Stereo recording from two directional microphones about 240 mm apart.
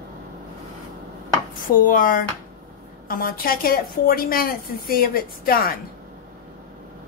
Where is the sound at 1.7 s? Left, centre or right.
Left.